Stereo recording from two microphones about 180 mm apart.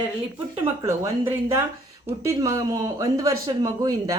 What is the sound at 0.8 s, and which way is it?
Speech, 15° right (ahead or behind).